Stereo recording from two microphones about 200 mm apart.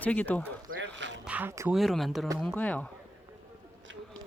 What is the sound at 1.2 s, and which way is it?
Speech, 5° right (ahead or behind).